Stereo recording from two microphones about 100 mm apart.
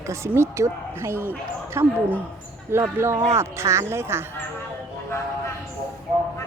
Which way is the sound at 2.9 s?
25° right (ahead or behind).